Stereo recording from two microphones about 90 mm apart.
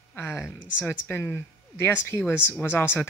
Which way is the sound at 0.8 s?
20° left (ahead or behind).